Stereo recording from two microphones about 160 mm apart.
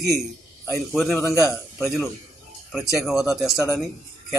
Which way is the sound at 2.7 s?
Centre (ahead or behind).